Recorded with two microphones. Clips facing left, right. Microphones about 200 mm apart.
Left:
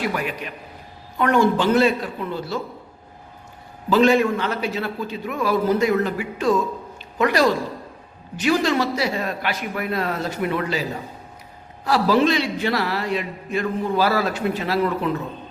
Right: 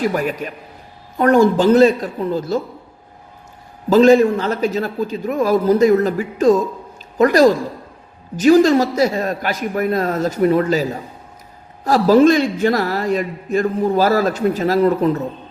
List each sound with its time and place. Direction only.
0.0 s a man's voice: 40° right (ahead or behind)
3.8 s a man's voice: 40° right (ahead or behind)
11.9 s a man's voice: 45° right (ahead or behind)